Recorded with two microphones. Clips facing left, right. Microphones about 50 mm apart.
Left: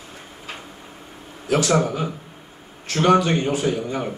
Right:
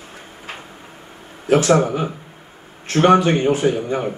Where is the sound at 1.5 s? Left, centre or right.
Right; by 4.2 s centre.